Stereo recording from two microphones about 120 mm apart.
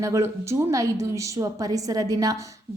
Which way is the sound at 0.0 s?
25° right (ahead or behind).